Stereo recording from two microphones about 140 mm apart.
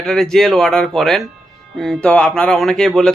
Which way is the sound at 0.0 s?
5° left (ahead or behind).